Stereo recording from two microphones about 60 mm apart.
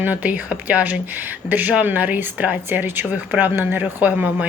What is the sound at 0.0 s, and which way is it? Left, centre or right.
A woman's voice, right.